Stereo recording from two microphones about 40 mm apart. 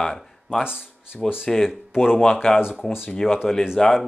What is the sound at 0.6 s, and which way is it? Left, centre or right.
Speech, centre.